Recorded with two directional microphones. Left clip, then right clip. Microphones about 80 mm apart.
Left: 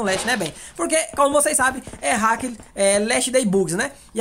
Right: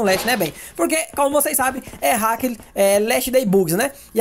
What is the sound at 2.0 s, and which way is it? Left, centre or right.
A woman's voice, right.